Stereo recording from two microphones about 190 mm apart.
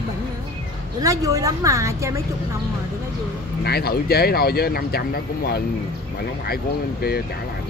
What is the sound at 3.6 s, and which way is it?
Speech, 55° left (ahead or behind).